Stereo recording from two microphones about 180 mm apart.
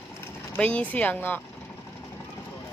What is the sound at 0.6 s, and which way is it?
Speech, 5° left (ahead or behind).